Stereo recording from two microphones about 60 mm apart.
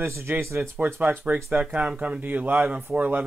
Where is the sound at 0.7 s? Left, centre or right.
Right.